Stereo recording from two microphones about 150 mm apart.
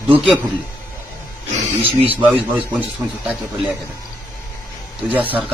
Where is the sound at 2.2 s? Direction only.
10° right (ahead or behind).